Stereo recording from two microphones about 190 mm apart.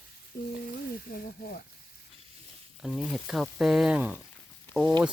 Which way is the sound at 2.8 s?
Centre (ahead or behind).